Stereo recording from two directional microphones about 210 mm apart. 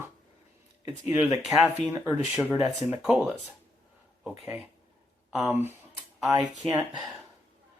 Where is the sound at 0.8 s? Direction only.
15° right (ahead or behind).